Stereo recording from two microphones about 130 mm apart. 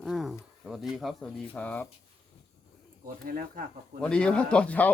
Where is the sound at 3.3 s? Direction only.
90° right.